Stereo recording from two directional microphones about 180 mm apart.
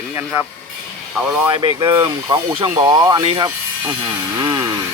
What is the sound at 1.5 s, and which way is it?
Speech, 30° right (ahead or behind).